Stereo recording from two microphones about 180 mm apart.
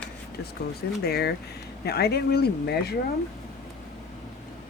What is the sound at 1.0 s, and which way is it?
Speech, 60° left (ahead or behind).